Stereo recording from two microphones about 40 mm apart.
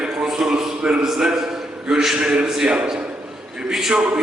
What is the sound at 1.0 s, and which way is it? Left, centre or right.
A man's voice, centre.